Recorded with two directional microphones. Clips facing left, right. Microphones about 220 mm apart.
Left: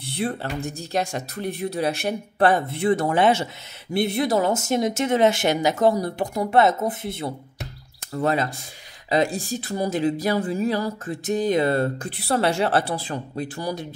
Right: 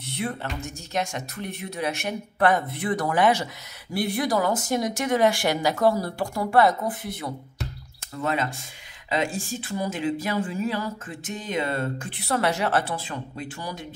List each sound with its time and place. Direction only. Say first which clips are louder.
0.0 s speech: left 3 dB; 30° left (ahead or behind)
8.1 s speech: left 4 dB; 35° left (ahead or behind)